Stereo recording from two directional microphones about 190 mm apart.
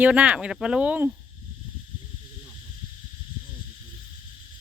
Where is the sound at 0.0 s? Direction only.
5° right (ahead or behind).